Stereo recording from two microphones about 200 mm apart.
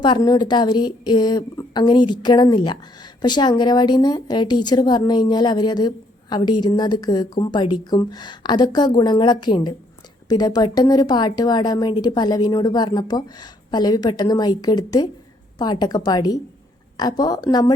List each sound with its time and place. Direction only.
0.0 s speech: 20° left (ahead or behind)